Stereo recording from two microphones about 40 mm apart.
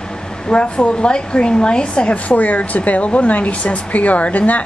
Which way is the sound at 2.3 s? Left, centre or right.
Left.